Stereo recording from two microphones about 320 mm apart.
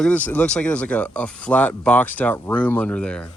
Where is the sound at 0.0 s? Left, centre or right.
Centre.